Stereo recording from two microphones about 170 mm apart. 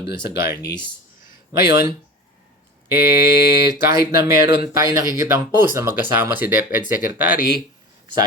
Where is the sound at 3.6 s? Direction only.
15° right (ahead or behind).